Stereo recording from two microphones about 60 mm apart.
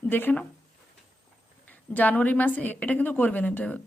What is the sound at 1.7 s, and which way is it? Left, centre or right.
A woman's voice, left.